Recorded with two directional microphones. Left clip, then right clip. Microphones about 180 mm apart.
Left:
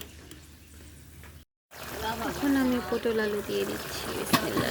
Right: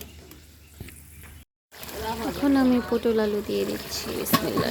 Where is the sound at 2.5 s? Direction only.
20° right (ahead or behind).